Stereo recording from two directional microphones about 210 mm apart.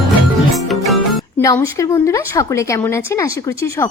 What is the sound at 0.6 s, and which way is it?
Music, centre (ahead or behind).